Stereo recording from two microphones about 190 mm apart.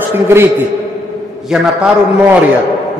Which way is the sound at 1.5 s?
5° right (ahead or behind).